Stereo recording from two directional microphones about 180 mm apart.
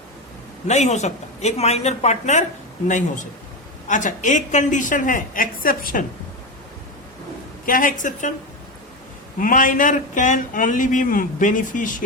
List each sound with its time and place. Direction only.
0.7 s speech: 40° left (ahead or behind)
7.6 s speech: 50° left (ahead or behind)
9.4 s speech: 50° left (ahead or behind)